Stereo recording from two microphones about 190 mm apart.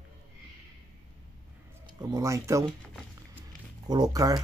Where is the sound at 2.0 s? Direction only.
20° right (ahead or behind).